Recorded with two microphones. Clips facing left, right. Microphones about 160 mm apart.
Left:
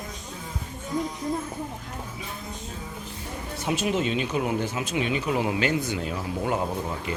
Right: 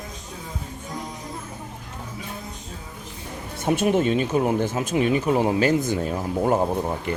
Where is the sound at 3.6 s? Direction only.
55° right (ahead or behind).